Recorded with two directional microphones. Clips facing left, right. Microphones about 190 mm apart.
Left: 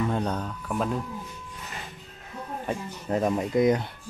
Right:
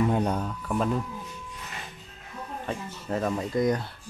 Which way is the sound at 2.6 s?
15° left (ahead or behind).